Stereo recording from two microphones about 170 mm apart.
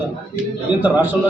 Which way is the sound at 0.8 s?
10° right (ahead or behind).